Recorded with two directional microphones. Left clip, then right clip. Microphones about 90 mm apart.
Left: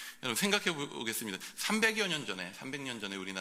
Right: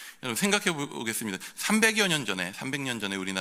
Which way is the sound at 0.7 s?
60° right (ahead or behind).